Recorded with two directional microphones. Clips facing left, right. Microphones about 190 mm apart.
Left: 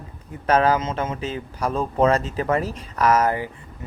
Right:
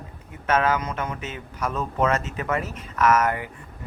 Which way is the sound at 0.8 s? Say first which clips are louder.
Left 4 dB; 25° left (ahead or behind).